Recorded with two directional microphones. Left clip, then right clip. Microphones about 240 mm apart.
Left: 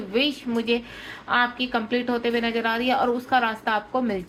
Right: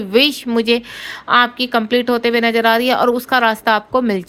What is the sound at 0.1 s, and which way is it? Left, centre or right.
A woman's voice, right.